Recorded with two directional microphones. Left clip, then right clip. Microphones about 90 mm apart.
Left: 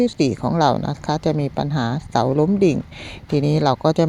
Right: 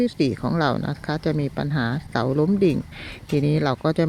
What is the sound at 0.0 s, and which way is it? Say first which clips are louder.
Speech: left 4 dB; 25° left (ahead or behind).